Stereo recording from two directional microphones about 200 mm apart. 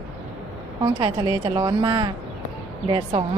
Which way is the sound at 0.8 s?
20° right (ahead or behind).